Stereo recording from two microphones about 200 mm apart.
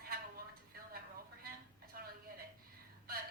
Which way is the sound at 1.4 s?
50° right (ahead or behind).